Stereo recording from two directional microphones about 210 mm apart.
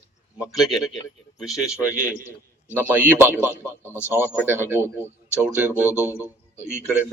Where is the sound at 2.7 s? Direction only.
10° right (ahead or behind).